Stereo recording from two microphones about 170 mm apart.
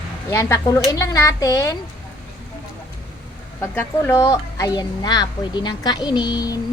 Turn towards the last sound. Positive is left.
turn(degrees=20)  # may be behind; listen again after turning